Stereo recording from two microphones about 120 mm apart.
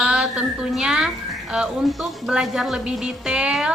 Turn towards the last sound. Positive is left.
turn(degrees=-5)  # may be behind; listen again after turning